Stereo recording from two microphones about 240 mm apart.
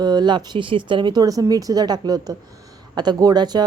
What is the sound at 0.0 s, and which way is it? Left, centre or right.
A woman's voice, centre.